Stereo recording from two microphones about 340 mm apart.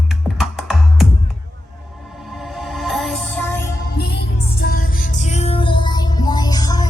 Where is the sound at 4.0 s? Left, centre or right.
Left; by 6.9 s centre.